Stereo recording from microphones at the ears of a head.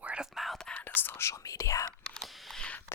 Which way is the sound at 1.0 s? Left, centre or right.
Left.